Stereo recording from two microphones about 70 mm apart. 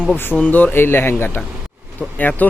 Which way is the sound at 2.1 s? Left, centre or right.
Left.